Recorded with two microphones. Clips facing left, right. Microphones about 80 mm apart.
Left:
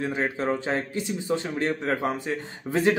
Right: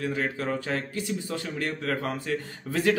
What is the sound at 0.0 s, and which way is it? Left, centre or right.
Speech, left.